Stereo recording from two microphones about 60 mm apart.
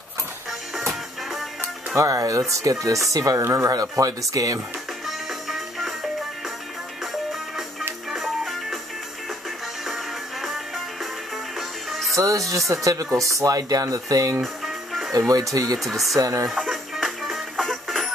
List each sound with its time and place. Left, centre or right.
0.5 s music: centre
2.0 s speech: right
5.0 s music: centre
8.1 s music: centre
11.5 s music: centre
12.2 s speech: right
14.4 s music: centre
15.1 s speech: right
15.8 s speech: centre
16.2 s speech: right
16.9 s music: centre